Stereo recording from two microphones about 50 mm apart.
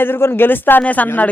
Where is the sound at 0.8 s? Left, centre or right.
Left.